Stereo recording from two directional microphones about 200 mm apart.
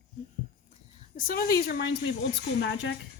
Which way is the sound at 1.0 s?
45° left (ahead or behind).